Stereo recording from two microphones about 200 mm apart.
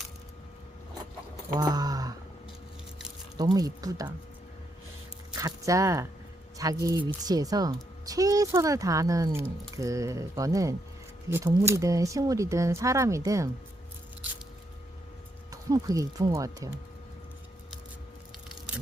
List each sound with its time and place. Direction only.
1.5 s a sound: 20° right (ahead or behind)
3.3 s speech: 20° right (ahead or behind)
5.3 s speech: 15° right (ahead or behind)
15.7 s speech: 20° right (ahead or behind)